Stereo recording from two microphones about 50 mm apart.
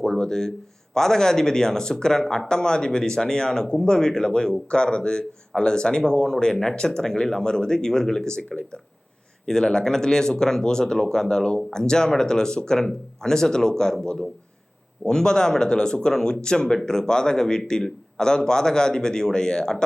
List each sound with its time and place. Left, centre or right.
0.0 s speech: centre